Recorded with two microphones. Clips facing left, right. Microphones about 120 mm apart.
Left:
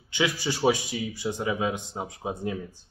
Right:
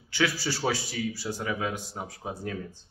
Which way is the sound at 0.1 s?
15° left (ahead or behind).